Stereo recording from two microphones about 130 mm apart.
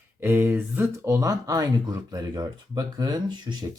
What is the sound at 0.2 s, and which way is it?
Speech, 15° right (ahead or behind).